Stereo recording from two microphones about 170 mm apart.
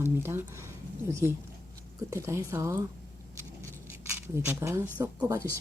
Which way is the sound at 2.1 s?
15° right (ahead or behind).